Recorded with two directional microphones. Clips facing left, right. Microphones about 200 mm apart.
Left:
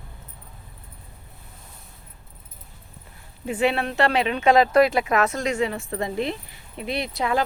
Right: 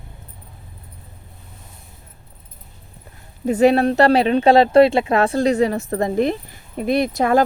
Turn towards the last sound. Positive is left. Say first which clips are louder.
# right 8 dB
turn(degrees=-45)  # may be behind; listen again after turning